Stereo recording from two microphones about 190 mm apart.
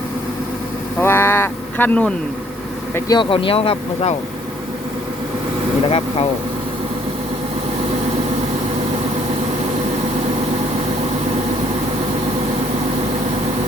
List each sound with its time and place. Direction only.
0.9 s speech: 10° left (ahead or behind)
2.9 s speech: 20° left (ahead or behind)